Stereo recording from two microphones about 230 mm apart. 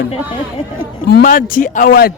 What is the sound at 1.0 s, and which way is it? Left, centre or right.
Speech, left.